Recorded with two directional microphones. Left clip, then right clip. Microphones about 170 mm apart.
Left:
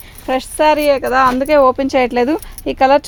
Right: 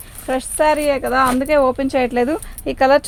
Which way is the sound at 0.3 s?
40° left (ahead or behind).